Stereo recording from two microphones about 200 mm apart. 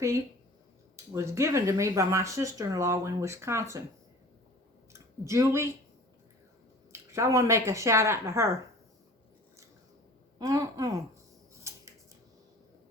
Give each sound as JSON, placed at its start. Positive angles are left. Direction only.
{"t": 1.1, "sound": "speech", "side_deg": -15}
{"t": 5.2, "sound": "speech", "side_deg": -15}
{"t": 6.9, "sound": "speech", "side_deg": -15}
{"t": 10.3, "sound": "speech", "side_deg": -15}
{"t": 11.7, "sound": "scissors", "side_deg": -15}